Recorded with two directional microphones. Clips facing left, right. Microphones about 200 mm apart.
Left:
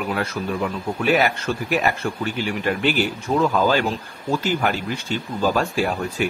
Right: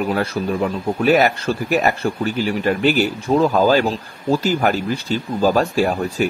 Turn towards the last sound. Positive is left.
turn(degrees=-40)  # may be behind; listen again after turning